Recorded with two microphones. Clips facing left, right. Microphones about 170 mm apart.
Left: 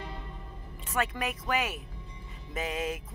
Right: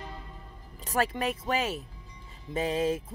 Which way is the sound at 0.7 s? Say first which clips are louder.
Right 3 dB; 35° right (ahead or behind).